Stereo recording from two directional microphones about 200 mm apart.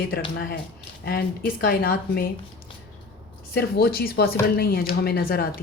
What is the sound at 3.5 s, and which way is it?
A woman's voice, 50° left (ahead or behind).